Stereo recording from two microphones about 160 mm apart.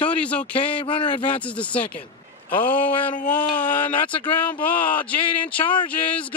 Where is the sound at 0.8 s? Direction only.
35° left (ahead or behind).